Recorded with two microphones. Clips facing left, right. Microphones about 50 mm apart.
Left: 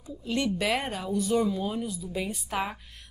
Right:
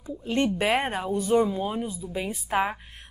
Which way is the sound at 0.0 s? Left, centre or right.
Right.